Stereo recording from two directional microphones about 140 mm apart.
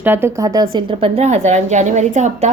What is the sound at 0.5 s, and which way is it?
A woman's voice, 40° right (ahead or behind).